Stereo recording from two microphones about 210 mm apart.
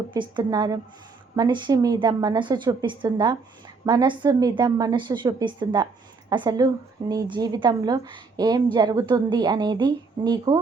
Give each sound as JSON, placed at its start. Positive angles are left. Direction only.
{"t": 0.1, "sound": "a woman's voice", "side_deg": -20}